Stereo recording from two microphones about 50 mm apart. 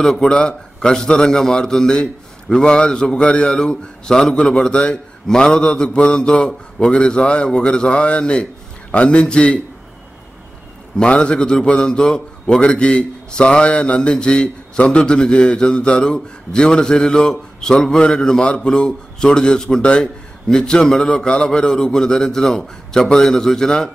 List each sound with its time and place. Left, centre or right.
0.0 s a man's voice: centre
11.0 s a man's voice: centre